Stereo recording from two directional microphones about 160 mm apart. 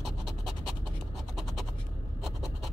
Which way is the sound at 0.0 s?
Centre (ahead or behind).